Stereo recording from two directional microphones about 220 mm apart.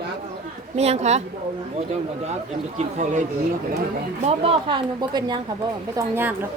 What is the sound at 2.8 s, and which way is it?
A woman's voice, 30° right (ahead or behind).